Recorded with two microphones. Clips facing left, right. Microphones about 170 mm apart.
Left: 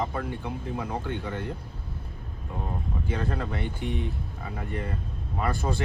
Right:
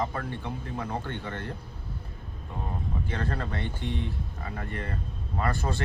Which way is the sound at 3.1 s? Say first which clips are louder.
Left 3 dB; 10° left (ahead or behind).